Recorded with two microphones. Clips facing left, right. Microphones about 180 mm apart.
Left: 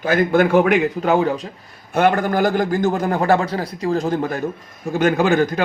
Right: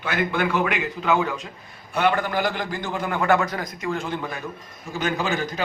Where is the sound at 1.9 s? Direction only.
45° left (ahead or behind).